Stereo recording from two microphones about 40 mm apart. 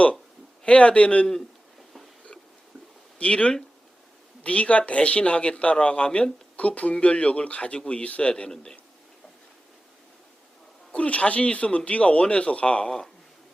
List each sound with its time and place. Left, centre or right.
0.6 s speech: left
3.2 s speech: left
6.6 s speech: left
10.9 s speech: left
12.8 s speech: centre